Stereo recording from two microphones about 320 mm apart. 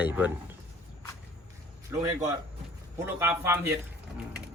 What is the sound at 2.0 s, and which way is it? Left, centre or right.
Speech, centre.